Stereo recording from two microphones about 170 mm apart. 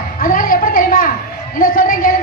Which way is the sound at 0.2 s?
55° left (ahead or behind).